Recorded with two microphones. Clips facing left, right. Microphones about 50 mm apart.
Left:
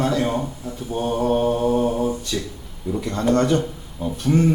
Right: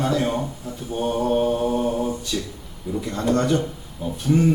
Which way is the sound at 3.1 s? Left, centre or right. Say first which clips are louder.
Left 2 dB; left.